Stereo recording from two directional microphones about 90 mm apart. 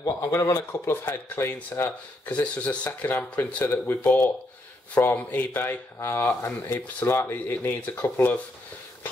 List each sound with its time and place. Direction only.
0.2 s speech: 35° left (ahead or behind)